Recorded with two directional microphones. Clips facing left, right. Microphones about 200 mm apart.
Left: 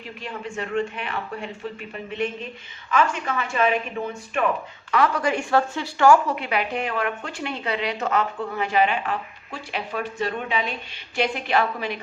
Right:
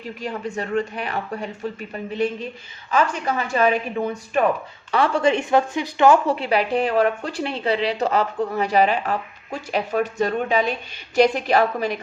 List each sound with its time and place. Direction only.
0.2 s a woman's voice: 40° right (ahead or behind); by 6.1 s 20° right (ahead or behind)
6.2 s a woman's voice: 30° right (ahead or behind)